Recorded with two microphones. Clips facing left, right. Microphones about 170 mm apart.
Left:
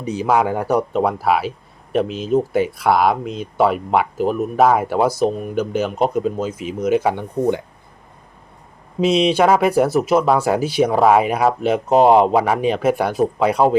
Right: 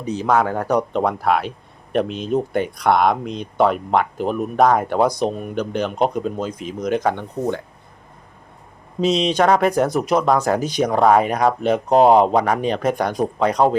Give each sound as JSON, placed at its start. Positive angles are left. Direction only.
{"t": 0.0, "sound": "speech", "side_deg": 10}
{"t": 9.0, "sound": "speech", "side_deg": 10}